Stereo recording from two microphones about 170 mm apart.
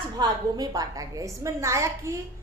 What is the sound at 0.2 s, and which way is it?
A child's voice, 25° right (ahead or behind).